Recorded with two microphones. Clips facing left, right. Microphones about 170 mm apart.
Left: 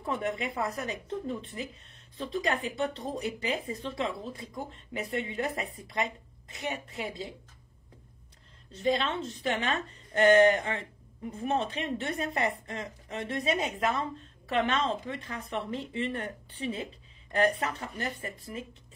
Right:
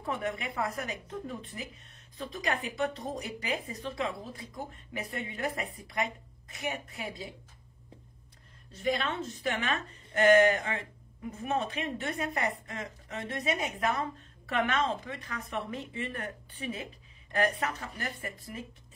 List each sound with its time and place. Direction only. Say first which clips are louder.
0.1 s a woman's voice: left 2 dB; 25° left (ahead or behind)
8.7 s a woman's voice: left 3 dB; 25° left (ahead or behind)